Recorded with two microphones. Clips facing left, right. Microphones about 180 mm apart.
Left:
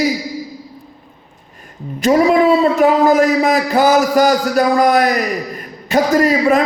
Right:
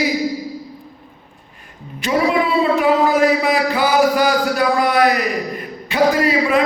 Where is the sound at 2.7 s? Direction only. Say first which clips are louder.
Left 4 dB; 45° left (ahead or behind).